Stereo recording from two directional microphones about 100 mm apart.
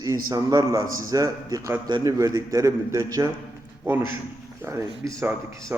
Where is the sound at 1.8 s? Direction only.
40° right (ahead or behind).